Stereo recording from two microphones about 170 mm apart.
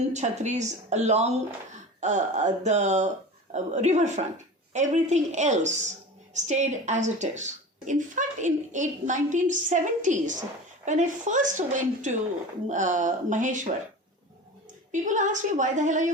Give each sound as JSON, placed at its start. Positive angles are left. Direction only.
{"t": 0.1, "sound": "a woman's voice", "side_deg": -45}
{"t": 14.9, "sound": "a woman's voice", "side_deg": -45}